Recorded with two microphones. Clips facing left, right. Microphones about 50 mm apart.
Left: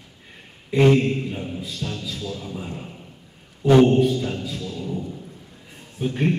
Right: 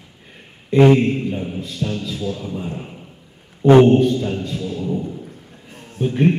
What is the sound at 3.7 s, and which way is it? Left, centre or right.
Speech, right.